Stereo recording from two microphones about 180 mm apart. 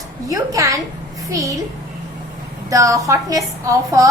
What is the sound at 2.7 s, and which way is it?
Speech, 20° right (ahead or behind).